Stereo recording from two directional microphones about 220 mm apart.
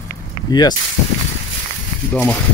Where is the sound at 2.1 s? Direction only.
5° left (ahead or behind).